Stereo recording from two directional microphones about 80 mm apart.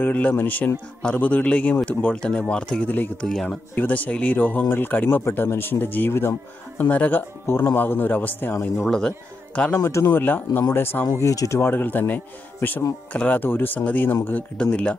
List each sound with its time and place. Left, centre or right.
0.0 s speech: left
8.7 s speech: centre
9.8 s speech: left; by 15.0 s centre